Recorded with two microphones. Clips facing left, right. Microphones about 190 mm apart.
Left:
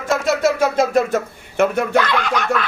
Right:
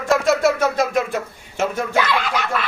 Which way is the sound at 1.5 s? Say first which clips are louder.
Left 5 dB; 60° left (ahead or behind).